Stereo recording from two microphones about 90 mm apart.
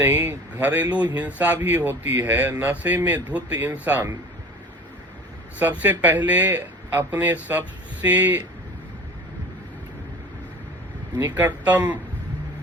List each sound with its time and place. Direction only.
0.0 s speech: 25° right (ahead or behind)
5.5 s speech: 20° right (ahead or behind)
11.2 s speech: 20° right (ahead or behind)